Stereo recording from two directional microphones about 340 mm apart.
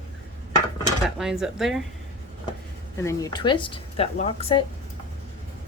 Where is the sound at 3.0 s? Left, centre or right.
Centre.